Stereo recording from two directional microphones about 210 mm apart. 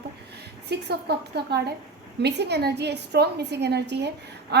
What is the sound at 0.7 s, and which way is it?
A woman's voice, 50° right (ahead or behind).